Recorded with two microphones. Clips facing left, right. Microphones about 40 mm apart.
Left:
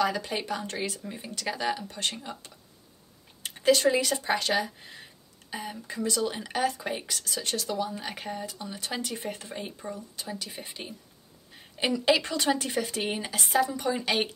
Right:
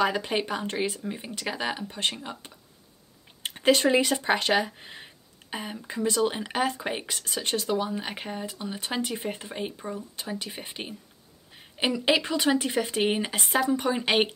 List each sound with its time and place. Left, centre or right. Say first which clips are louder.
0.0 s speech: right 3 dB; right
11.5 s speech: right 1 dB; centre